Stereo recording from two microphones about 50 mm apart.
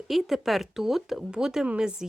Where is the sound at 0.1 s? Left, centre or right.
Centre.